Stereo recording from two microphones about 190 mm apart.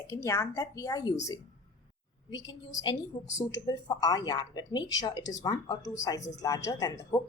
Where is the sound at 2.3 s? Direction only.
80° left.